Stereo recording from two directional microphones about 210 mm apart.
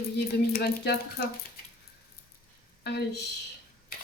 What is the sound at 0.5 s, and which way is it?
Speech, 50° left (ahead or behind).